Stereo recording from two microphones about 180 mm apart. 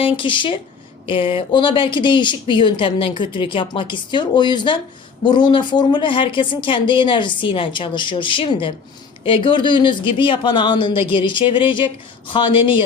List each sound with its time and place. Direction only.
0.0 s speech: 30° left (ahead or behind)